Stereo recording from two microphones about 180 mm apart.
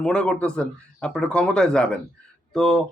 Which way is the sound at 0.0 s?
5° left (ahead or behind).